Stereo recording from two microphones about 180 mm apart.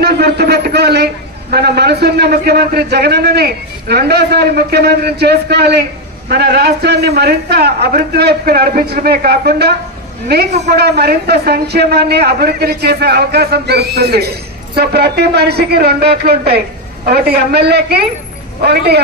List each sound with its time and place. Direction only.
0.0 s a man's voice: 65° right (ahead or behind)